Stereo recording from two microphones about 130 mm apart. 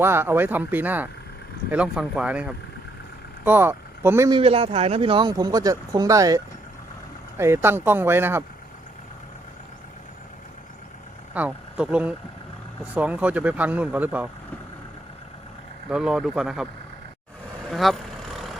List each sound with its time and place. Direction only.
0.0 s speech: 20° right (ahead or behind)
4.3 s a man's voice: 45° right (ahead or behind); by 8.4 s 15° right (ahead or behind)
11.3 s speech: 10° right (ahead or behind)
15.9 s speech: 5° right (ahead or behind)
17.7 s vehicle: centre (ahead or behind)